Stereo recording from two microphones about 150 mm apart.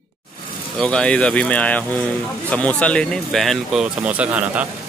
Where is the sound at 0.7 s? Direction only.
5° left (ahead or behind); by 4.6 s 10° right (ahead or behind).